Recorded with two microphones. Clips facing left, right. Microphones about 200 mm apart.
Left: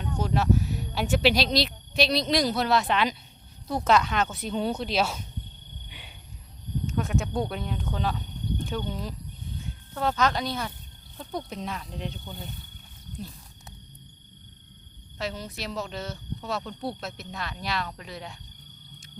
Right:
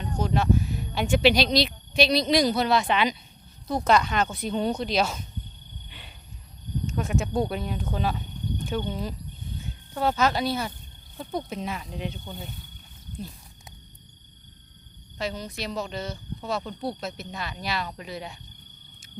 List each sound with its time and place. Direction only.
0.0 s speech: centre (ahead or behind)
5.9 s a sound: 10° left (ahead or behind)
6.8 s speech: centre (ahead or behind)
15.2 s speech: centre (ahead or behind)